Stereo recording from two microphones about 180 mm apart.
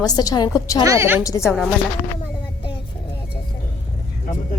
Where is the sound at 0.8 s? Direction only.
15° right (ahead or behind).